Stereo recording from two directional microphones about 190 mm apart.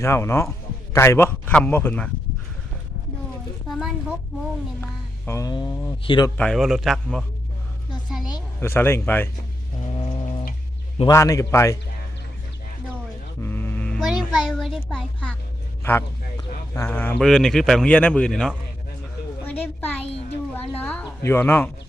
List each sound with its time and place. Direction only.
0.0 s speech: 15° left (ahead or behind)
3.7 s a sound: centre (ahead or behind)
4.8 s speech: 10° left (ahead or behind)
6.3 s speech: 5° left (ahead or behind)
8.3 s speech: 10° left (ahead or behind)
9.8 s a sound: 25° left (ahead or behind)
11.1 s speech: 15° left (ahead or behind)
13.4 s a child's voice: 10° left (ahead or behind)
19.5 s a sound: 10° left (ahead or behind)